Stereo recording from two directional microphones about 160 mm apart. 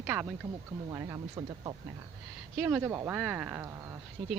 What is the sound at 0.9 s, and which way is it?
Speech, 20° right (ahead or behind).